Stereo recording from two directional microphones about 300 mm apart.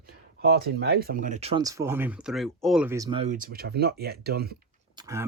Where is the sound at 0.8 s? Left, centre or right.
Right.